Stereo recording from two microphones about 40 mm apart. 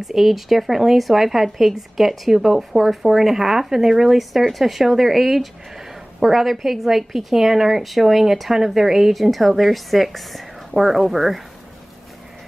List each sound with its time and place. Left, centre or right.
0.0 s a woman's voice: centre